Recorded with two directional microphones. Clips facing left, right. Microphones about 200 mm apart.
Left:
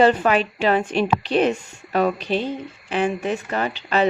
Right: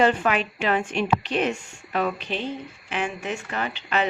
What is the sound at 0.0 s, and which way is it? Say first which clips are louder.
A woman's voice: left 4 dB; 35° left (ahead or behind).